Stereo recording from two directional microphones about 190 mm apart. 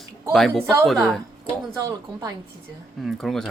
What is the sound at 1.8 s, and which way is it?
Speech, 20° right (ahead or behind).